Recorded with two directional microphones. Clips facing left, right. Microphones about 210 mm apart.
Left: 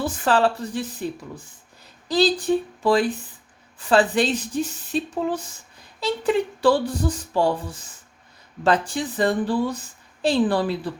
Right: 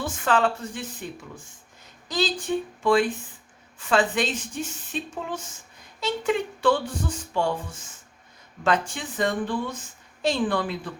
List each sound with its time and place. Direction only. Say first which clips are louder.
0.0 s speech: left 3 dB; 35° left (ahead or behind)
2.0 s speech: left 7 dB; 35° left (ahead or behind)